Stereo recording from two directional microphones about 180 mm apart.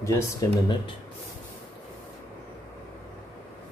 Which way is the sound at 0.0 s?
20° left (ahead or behind).